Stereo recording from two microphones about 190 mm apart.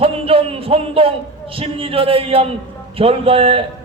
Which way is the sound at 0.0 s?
30° right (ahead or behind).